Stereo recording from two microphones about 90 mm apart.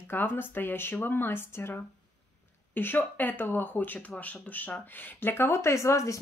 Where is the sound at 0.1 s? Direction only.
25° left (ahead or behind).